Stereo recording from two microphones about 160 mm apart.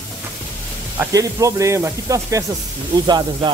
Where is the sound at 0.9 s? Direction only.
20° right (ahead or behind).